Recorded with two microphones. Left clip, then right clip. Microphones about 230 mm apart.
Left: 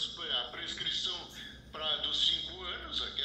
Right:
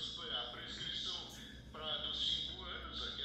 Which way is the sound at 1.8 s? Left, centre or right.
Left.